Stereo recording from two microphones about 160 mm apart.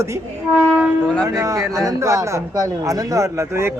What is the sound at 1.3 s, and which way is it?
Speech, 20° right (ahead or behind).